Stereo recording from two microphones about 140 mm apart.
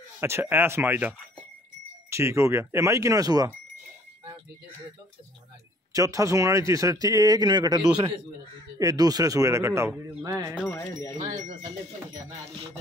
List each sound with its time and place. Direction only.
0.2 s speech: 15° right (ahead or behind)
5.9 s speech: 25° right (ahead or behind)
10.7 s speech: 20° left (ahead or behind)